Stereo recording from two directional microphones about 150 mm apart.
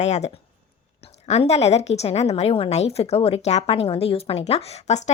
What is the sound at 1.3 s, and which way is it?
A woman's voice, 45° left (ahead or behind).